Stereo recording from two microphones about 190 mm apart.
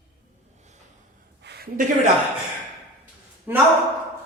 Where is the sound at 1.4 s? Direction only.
55° right (ahead or behind).